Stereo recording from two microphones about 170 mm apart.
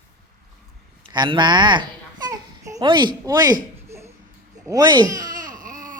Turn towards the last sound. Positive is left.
turn(degrees=-50)  # may be behind; listen again after turning